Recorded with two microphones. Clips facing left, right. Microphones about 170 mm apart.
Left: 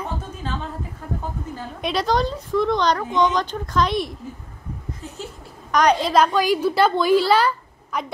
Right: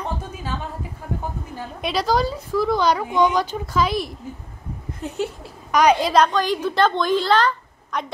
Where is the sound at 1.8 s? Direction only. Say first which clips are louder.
Even; centre (ahead or behind).